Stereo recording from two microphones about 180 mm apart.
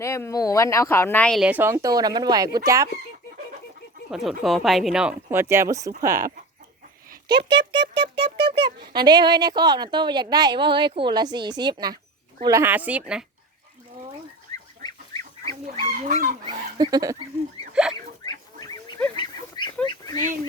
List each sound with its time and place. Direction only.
0.0 s speech: 15° left (ahead or behind)
1.5 s speech: 10° right (ahead or behind)
4.1 s speech: centre (ahead or behind); by 5.9 s 15° right (ahead or behind)
7.1 s a child's voice: 65° right (ahead or behind)
8.1 s speech: 65° right (ahead or behind)
9.0 s speech: 25° right (ahead or behind); by 13.2 s 5° right (ahead or behind)
15.6 s speech: 40° right (ahead or behind)
16.5 s speech: 25° right (ahead or behind)
17.9 s a sound: 20° left (ahead or behind)
19.1 s goose: 25° left (ahead or behind)
19.8 s a sound: 25° left (ahead or behind)